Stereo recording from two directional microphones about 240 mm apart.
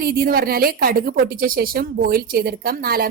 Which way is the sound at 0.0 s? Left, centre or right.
Right.